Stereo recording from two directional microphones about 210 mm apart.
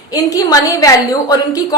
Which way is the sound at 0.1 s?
15° left (ahead or behind).